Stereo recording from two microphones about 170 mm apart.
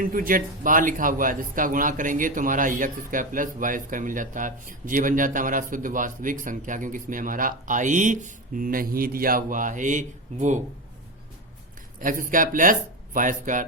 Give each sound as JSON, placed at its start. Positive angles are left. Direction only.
{"t": 0.0, "sound": "speech", "side_deg": -55}
{"t": 11.9, "sound": "speech", "side_deg": -55}